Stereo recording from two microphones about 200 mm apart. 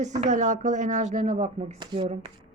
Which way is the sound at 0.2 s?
40° right (ahead or behind).